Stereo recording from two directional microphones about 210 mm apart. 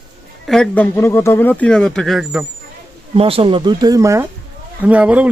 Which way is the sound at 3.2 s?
25° right (ahead or behind).